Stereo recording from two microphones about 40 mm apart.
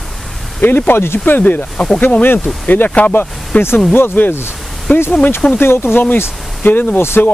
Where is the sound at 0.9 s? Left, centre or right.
Left.